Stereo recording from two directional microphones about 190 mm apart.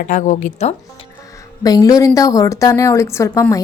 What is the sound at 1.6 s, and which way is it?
A woman's voice, 20° left (ahead or behind).